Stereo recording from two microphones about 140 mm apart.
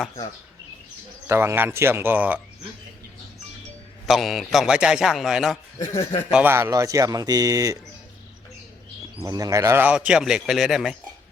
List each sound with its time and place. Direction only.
1.3 s speech: 20° right (ahead or behind)
4.0 s a man's voice: centre (ahead or behind)
5.8 s speech: 20° left (ahead or behind)
6.3 s speech: 15° right (ahead or behind)
9.2 s speech: 25° right (ahead or behind)
9.8 s a man's voice: 10° right (ahead or behind)